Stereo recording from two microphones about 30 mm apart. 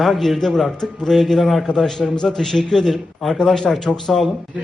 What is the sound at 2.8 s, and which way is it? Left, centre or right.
Speech, centre.